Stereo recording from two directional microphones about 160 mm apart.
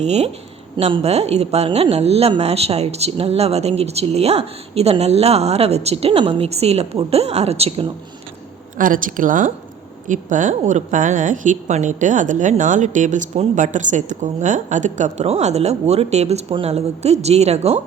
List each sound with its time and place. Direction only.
0.0 s speech: 45° right (ahead or behind)
8.8 s speech: 55° right (ahead or behind)